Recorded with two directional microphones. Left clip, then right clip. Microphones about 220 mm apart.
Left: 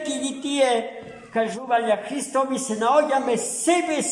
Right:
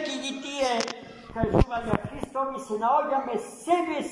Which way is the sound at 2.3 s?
50° left (ahead or behind).